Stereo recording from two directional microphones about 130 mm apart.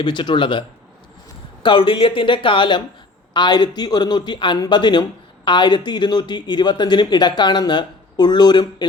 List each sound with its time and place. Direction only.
0.0 s speech: 35° left (ahead or behind)
1.6 s speech: 40° left (ahead or behind)